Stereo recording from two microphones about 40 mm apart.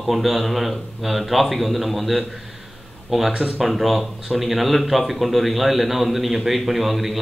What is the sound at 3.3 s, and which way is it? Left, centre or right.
Speech, right.